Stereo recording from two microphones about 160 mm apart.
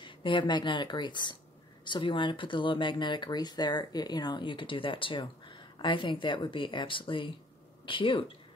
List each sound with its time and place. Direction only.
0.0 s a woman's voice: 30° left (ahead or behind)